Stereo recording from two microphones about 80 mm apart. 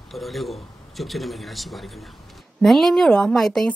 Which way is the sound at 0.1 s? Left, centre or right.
Centre.